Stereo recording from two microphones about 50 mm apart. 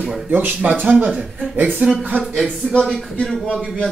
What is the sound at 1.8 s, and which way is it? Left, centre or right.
Speech, right.